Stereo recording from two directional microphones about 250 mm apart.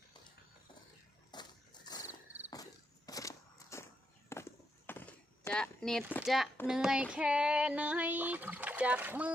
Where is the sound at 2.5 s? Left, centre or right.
Centre.